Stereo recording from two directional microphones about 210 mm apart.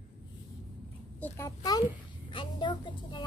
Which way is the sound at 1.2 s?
15° left (ahead or behind).